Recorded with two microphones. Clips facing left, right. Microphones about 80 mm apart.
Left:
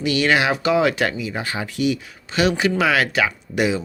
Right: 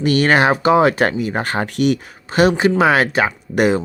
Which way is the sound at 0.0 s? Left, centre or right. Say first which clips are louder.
Right 4 dB; right.